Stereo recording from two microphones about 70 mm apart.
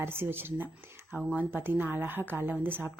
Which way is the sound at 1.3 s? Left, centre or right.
Centre.